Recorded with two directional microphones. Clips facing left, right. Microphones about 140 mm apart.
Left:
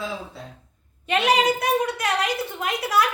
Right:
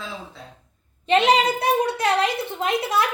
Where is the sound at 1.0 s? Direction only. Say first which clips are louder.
Right 2 dB; 25° right (ahead or behind).